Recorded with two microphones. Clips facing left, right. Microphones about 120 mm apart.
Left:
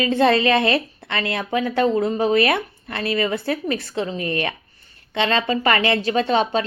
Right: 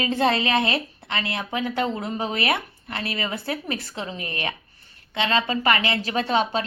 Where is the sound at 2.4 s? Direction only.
25° right (ahead or behind).